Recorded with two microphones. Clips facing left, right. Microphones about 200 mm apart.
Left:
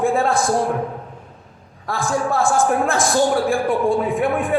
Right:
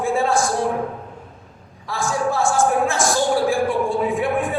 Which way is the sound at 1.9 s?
55° left (ahead or behind).